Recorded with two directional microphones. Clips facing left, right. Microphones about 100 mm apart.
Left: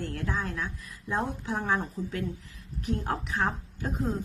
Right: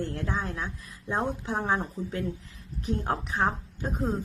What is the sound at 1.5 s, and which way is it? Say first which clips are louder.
Speech: even; 35° right (ahead or behind).